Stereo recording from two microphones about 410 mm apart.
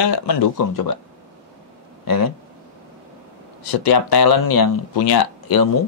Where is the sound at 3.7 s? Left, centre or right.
Left.